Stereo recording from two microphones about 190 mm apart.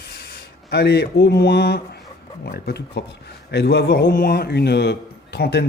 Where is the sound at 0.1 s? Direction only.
60° left (ahead or behind).